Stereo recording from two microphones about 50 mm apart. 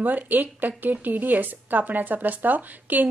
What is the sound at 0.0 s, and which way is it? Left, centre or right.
A woman's voice, right.